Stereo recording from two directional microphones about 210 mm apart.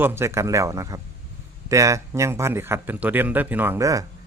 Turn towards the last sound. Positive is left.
turn(degrees=-15)  # may be behind; listen again after turning